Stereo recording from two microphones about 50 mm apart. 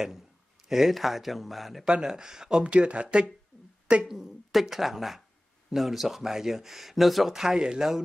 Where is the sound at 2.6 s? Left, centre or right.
Right.